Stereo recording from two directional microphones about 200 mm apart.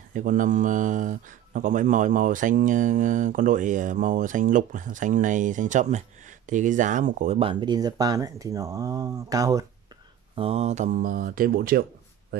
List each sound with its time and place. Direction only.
0.1 s speech: 40° right (ahead or behind); by 9.7 s 15° right (ahead or behind)
10.3 s speech: 30° right (ahead or behind); by 11.8 s 45° right (ahead or behind)